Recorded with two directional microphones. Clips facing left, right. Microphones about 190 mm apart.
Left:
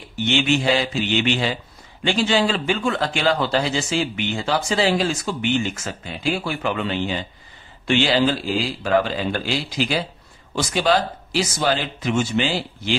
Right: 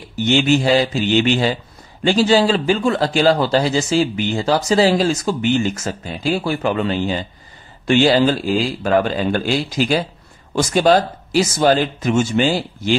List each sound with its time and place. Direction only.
0.1 s speech: 40° right (ahead or behind)